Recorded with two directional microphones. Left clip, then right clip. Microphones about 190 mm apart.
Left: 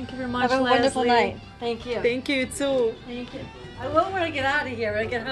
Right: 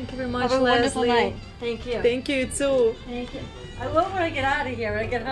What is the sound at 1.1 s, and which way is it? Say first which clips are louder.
Speech: left 1 dB; 35° left (ahead or behind).